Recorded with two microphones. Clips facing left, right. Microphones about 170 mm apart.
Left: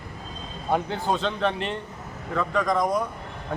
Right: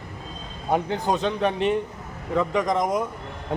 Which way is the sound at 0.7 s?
15° right (ahead or behind).